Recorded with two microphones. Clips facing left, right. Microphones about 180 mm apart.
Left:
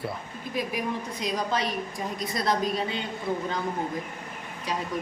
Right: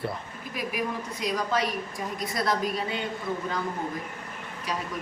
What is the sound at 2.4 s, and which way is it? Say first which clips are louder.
Speech: left 1 dB; 25° left (ahead or behind).